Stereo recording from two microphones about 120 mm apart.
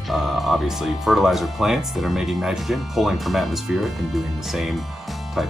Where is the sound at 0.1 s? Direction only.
Centre (ahead or behind).